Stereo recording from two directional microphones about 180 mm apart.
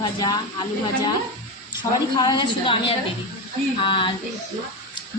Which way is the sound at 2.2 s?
25° left (ahead or behind).